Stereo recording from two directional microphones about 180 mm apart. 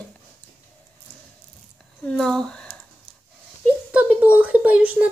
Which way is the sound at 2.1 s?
5° left (ahead or behind).